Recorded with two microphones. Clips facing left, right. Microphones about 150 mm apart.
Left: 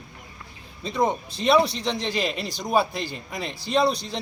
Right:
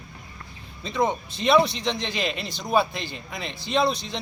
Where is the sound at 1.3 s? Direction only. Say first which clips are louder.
Right 1 dB; 35° left (ahead or behind).